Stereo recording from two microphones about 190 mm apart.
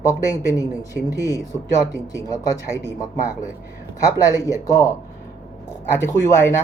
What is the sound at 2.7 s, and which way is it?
Speech, 15° left (ahead or behind).